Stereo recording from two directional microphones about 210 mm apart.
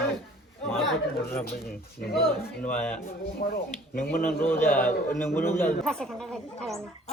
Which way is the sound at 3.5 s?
40° left (ahead or behind).